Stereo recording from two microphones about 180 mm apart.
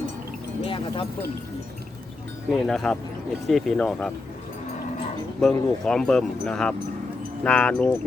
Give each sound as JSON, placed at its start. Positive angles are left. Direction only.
{"t": 0.6, "sound": "speech", "side_deg": 30}
{"t": 2.5, "sound": "speech", "side_deg": 5}
{"t": 5.4, "sound": "speech", "side_deg": 5}